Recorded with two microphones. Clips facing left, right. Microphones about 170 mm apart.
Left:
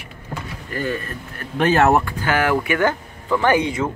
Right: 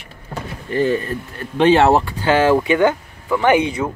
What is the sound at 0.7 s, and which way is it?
Speech, 30° right (ahead or behind).